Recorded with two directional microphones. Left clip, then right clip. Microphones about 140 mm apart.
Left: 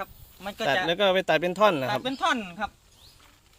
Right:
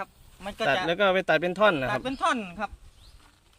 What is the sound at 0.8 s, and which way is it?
Speech, 5° right (ahead or behind).